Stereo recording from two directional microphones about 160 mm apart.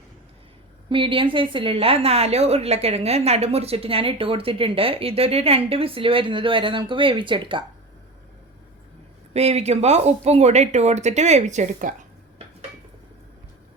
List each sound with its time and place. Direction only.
0.9 s a woman's voice: 30° right (ahead or behind)
9.3 s speech: 40° right (ahead or behind)